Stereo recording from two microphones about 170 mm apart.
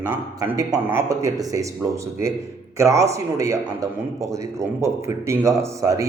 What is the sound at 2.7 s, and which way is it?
A man's voice, 20° right (ahead or behind).